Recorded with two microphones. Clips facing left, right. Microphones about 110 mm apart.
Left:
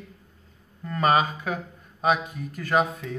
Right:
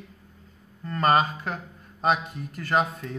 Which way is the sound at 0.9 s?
10° left (ahead or behind).